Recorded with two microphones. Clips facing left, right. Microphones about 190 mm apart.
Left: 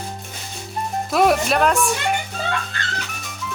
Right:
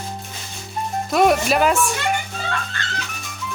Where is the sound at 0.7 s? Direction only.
Centre (ahead or behind).